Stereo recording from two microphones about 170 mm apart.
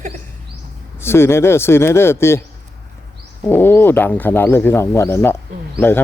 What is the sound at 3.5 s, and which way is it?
Speech, 10° left (ahead or behind).